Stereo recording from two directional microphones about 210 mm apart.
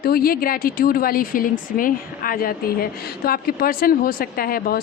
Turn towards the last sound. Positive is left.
turn(degrees=45)  # may be behind; listen again after turning